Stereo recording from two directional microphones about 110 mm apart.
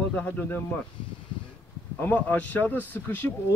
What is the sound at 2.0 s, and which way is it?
Speech, 15° left (ahead or behind).